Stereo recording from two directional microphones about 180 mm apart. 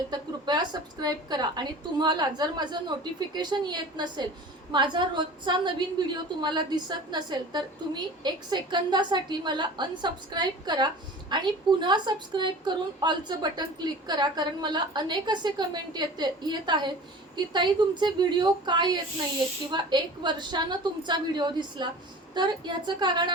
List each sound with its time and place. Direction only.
0.1 s a woman's voice: 25° right (ahead or behind)